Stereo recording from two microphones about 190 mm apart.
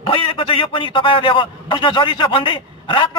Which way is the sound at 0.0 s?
30° left (ahead or behind).